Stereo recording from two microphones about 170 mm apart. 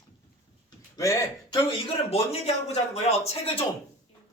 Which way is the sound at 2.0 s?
35° left (ahead or behind).